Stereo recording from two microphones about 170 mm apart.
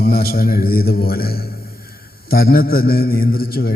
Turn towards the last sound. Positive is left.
turn(degrees=60)  # may be behind; listen again after turning